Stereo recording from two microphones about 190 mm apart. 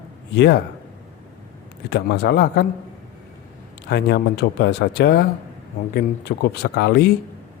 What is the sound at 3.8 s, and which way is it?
Speech, 60° left (ahead or behind).